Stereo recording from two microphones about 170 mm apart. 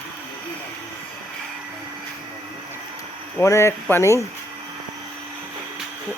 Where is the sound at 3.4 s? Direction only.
15° left (ahead or behind).